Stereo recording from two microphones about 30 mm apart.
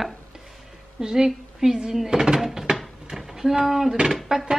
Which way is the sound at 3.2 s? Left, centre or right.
Centre.